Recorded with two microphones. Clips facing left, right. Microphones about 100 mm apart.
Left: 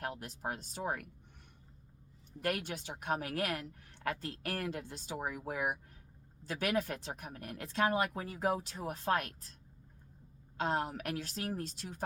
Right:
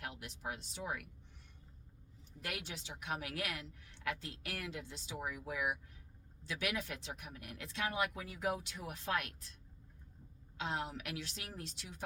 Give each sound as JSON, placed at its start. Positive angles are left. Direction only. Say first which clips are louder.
{"t": 0.0, "sound": "a woman's voice", "louder": "left 5 dB", "side_deg": 40}
{"t": 2.4, "sound": "a woman's voice", "louder": "left 9 dB", "side_deg": 50}
{"t": 10.6, "sound": "a woman's voice", "louder": "left 6 dB", "side_deg": 45}